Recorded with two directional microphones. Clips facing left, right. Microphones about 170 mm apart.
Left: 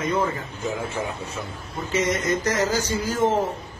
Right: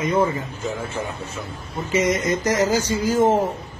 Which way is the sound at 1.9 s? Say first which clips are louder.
Right 3 dB; 10° right (ahead or behind).